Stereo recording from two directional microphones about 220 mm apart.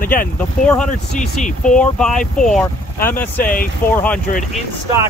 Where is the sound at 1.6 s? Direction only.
5° left (ahead or behind).